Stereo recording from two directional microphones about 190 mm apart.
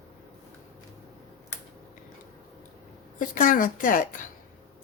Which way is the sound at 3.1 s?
45° left (ahead or behind).